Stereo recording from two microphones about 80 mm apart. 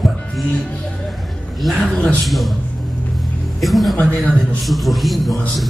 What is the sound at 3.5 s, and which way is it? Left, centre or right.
A woman's voice, centre.